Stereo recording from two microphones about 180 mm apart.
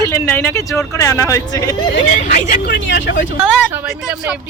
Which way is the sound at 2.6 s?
65° left (ahead or behind).